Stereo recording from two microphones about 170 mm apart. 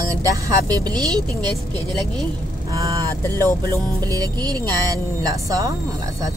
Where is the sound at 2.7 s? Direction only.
20° right (ahead or behind).